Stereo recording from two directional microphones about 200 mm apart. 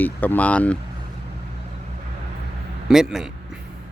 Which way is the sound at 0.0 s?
10° left (ahead or behind).